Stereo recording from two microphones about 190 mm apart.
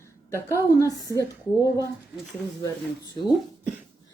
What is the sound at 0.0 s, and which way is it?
Speech, 15° left (ahead or behind).